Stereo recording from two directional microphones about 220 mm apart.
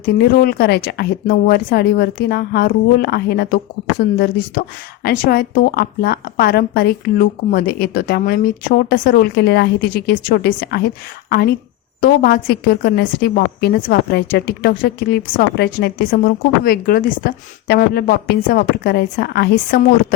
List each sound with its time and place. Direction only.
0.0 s a woman's voice: 40° left (ahead or behind)